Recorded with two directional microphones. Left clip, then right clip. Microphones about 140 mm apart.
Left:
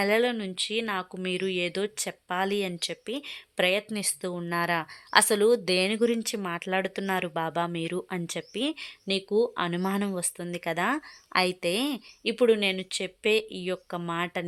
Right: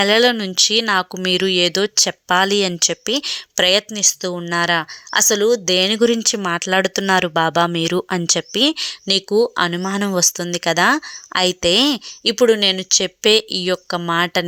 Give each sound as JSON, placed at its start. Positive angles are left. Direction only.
{"t": 0.0, "sound": "speech", "side_deg": -25}
{"t": 0.3, "sound": "speech", "side_deg": -40}
{"t": 3.9, "sound": "speech", "side_deg": -20}
{"t": 9.7, "sound": "speech", "side_deg": -20}
{"t": 10.2, "sound": "speech", "side_deg": -35}